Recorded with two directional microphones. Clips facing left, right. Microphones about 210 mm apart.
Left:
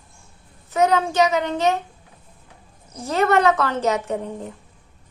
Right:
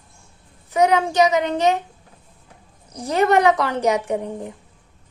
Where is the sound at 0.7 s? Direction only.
15° right (ahead or behind).